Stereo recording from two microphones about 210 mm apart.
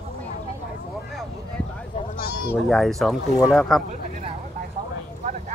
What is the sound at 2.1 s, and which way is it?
Bleat, 45° left (ahead or behind).